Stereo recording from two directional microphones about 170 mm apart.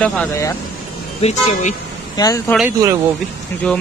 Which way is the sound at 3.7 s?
5° left (ahead or behind).